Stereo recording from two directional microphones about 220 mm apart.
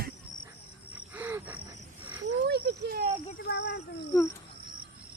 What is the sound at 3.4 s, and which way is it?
Speech, 50° left (ahead or behind).